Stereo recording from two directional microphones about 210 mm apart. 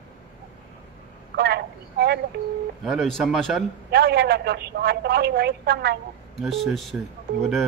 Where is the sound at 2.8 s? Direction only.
Centre (ahead or behind).